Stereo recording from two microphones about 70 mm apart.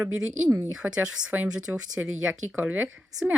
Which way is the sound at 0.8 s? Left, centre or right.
Centre.